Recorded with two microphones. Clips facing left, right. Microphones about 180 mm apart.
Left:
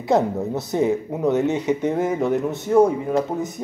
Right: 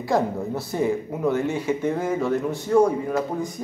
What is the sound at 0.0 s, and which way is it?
Speech, 20° left (ahead or behind).